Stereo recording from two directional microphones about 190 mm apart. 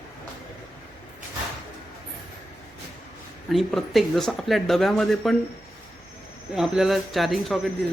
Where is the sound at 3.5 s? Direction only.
Centre (ahead or behind).